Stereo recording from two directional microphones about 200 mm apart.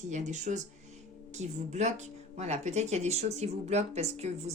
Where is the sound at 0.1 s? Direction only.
35° right (ahead or behind).